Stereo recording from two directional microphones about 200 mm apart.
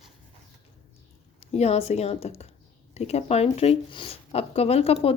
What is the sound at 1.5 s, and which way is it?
A woman's voice, 30° left (ahead or behind).